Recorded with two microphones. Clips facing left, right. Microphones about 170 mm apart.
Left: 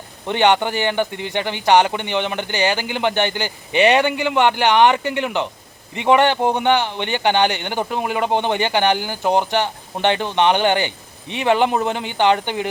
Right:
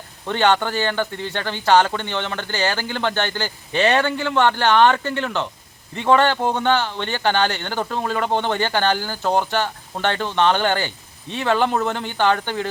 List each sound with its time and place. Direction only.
0.3 s speech: 15° left (ahead or behind)